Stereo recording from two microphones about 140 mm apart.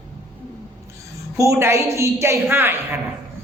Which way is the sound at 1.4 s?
20° right (ahead or behind).